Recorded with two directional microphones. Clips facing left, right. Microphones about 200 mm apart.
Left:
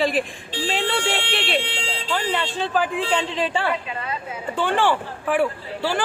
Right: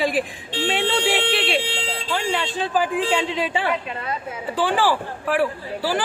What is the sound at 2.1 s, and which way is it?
Speech, 5° right (ahead or behind).